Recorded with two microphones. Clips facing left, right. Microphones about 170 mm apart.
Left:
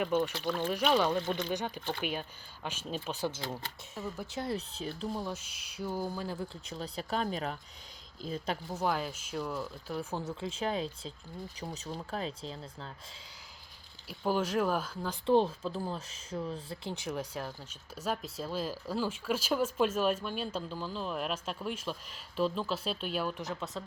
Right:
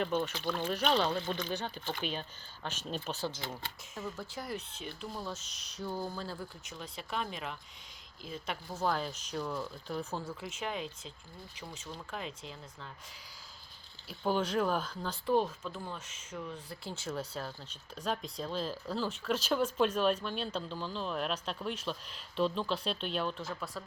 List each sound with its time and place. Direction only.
0.0 s speech: 10° left (ahead or behind); by 5.1 s 35° left (ahead or behind)
5.1 s speech: 15° left (ahead or behind)
6.3 s speech: 35° left (ahead or behind)
8.7 s speech: 10° left (ahead or behind)
10.4 s speech: 30° left (ahead or behind)
14.1 s speech: 10° left (ahead or behind)
15.3 s speech: 30° left (ahead or behind)
16.9 s speech: 15° left (ahead or behind)
23.4 s speech: 20° left (ahead or behind)